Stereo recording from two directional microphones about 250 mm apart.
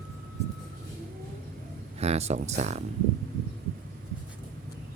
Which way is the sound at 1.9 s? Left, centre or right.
Right.